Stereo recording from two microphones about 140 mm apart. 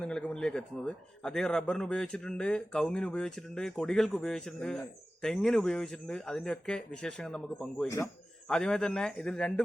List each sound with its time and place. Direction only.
0.0 s speech: 5° left (ahead or behind)
7.9 s a man's voice: 20° left (ahead or behind)
8.4 s speech: 5° left (ahead or behind)